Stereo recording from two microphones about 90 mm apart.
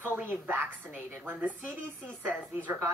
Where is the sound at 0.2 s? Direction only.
25° right (ahead or behind).